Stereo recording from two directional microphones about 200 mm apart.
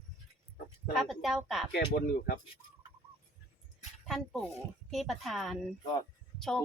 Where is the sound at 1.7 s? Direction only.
50° left (ahead or behind).